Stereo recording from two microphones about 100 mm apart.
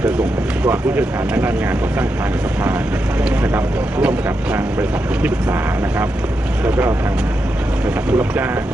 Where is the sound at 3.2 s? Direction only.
10° right (ahead or behind).